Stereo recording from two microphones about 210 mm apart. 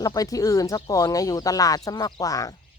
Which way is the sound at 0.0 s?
15° left (ahead or behind).